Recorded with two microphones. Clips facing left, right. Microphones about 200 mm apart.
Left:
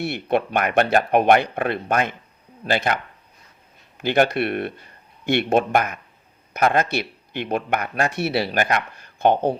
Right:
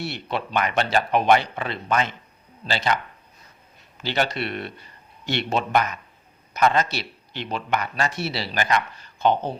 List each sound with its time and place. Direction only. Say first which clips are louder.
0.0 s speech: left 7 dB; 55° left (ahead or behind)